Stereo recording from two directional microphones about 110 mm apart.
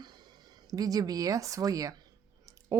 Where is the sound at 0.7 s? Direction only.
35° right (ahead or behind).